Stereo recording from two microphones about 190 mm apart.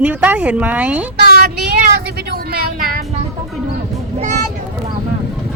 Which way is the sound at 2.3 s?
50° right (ahead or behind).